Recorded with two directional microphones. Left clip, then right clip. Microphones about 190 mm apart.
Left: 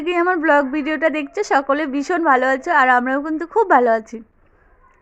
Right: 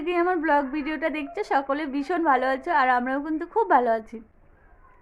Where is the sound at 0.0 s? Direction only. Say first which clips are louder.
Left 6 dB; 30° left (ahead or behind).